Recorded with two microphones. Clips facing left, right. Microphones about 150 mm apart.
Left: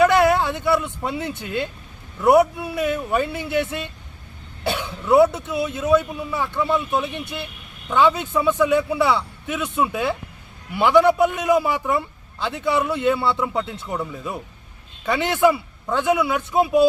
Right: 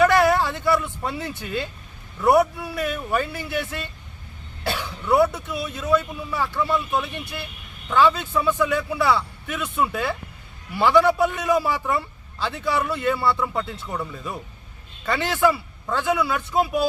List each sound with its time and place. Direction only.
0.0 s a man's voice: 20° left (ahead or behind)